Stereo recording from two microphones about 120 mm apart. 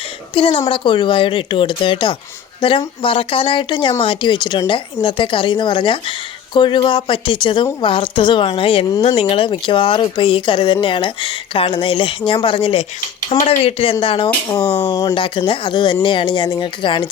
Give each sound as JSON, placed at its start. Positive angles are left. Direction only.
{"t": 0.3, "sound": "a woman's voice", "side_deg": 50}
{"t": 13.4, "sound": "speech", "side_deg": 75}
{"t": 14.0, "sound": "a woman's voice", "side_deg": 45}